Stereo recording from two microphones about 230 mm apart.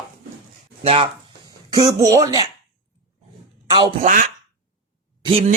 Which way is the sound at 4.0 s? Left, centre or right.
Right.